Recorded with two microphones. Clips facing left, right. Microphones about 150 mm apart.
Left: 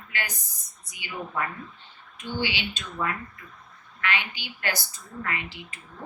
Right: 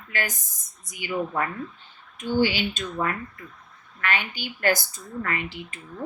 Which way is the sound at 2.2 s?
45° right (ahead or behind).